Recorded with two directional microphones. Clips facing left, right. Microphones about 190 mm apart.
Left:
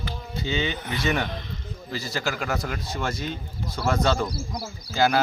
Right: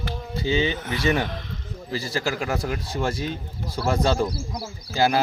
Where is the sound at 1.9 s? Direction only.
35° right (ahead or behind).